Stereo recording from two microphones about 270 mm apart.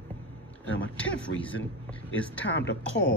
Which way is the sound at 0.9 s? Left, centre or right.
Centre.